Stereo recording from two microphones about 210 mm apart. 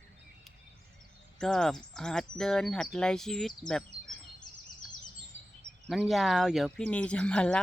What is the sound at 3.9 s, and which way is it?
Bird vocalization, 55° right (ahead or behind).